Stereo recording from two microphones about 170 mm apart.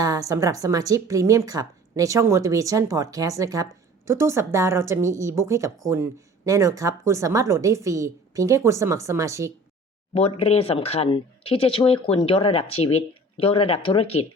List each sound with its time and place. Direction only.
0.0 s speech: 20° right (ahead or behind)
10.2 s speech: 35° left (ahead or behind)